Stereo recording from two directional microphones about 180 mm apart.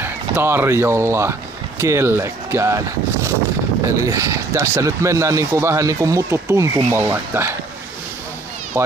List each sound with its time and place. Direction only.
0.0 s speech: 10° right (ahead or behind)
3.8 s speech: 15° right (ahead or behind)
8.8 s speech: 15° right (ahead or behind)